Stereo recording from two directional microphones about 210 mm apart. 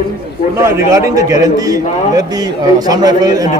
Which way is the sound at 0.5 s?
10° right (ahead or behind).